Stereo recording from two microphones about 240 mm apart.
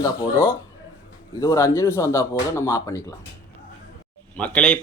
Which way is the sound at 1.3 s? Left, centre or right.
Centre.